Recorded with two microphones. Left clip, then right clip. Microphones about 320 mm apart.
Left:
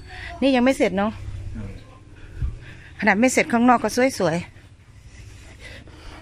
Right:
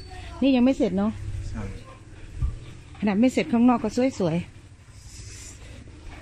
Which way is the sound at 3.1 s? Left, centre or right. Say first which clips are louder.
Left 5 dB; left.